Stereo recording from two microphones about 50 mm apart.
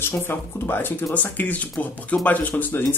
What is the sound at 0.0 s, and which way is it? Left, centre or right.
Speech, left.